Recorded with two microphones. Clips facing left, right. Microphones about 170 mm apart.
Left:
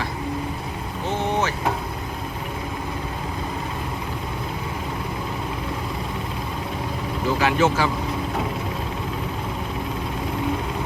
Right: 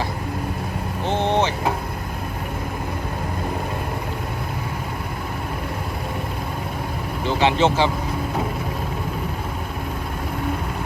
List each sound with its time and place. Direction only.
1.0 s vehicle: 30° right (ahead or behind)
7.3 s speech: 25° right (ahead or behind)